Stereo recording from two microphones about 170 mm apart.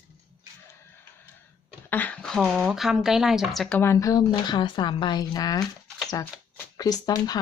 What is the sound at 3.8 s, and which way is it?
Speech, 15° left (ahead or behind).